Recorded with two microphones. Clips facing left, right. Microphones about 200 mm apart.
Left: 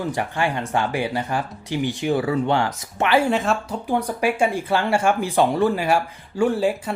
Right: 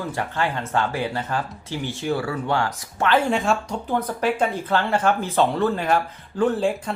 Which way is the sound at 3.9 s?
10° left (ahead or behind).